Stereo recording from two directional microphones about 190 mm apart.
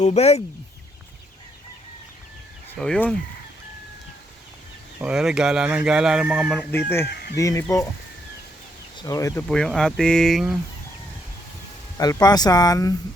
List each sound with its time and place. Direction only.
0.0 s speech: 35° left (ahead or behind)
2.7 s speech: 5° left (ahead or behind)
4.9 s speech: 5° right (ahead or behind)
7.3 s speech: 15° left (ahead or behind)
9.0 s speech: 15° left (ahead or behind)
9.5 s speech: 5° left (ahead or behind)
11.9 s speech: 20° left (ahead or behind)